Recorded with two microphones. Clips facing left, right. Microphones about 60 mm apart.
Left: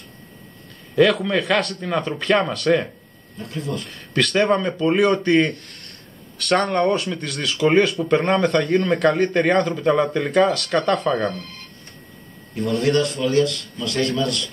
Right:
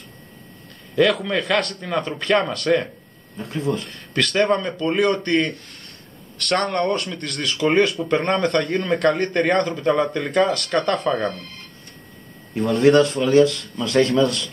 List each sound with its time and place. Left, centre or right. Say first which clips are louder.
0.9 s speech: left 2 dB; centre
3.3 s speech: right 2 dB; right
3.8 s speech: left 1 dB; centre
12.8 s speech: right 6 dB; right